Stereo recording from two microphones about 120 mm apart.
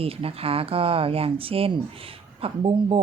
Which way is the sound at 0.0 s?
50° right (ahead or behind).